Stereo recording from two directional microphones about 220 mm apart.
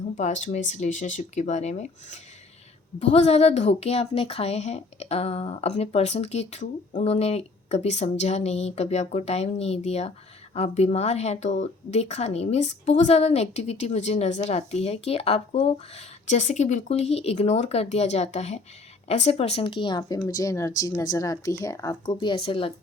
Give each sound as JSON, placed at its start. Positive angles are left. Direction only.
{"t": 0.2, "sound": "speech", "side_deg": 35}